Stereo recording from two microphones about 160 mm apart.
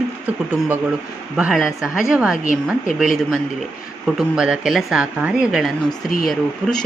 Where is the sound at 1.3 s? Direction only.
5° right (ahead or behind).